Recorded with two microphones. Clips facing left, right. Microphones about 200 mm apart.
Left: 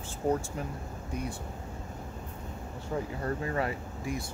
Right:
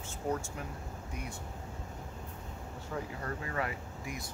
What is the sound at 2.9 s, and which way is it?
Speech, 30° left (ahead or behind).